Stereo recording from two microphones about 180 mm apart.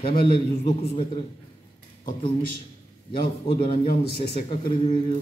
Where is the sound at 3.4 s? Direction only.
30° left (ahead or behind).